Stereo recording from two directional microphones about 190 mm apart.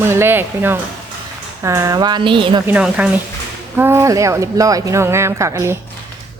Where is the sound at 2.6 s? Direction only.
5° right (ahead or behind).